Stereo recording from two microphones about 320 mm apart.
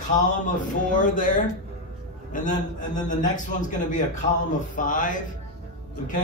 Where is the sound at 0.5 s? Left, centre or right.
Left.